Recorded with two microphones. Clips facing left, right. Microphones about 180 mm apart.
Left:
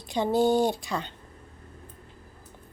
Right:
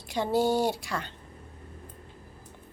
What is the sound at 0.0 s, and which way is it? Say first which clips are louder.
Speech: left 2 dB; 20° left (ahead or behind).